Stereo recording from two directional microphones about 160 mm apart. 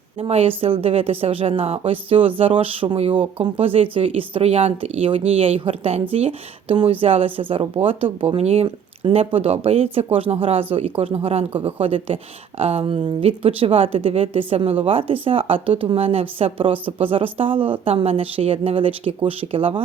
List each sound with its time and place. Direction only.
0.2 s speech: 35° right (ahead or behind)